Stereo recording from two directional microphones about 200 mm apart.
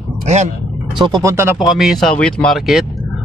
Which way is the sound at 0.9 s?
20° right (ahead or behind).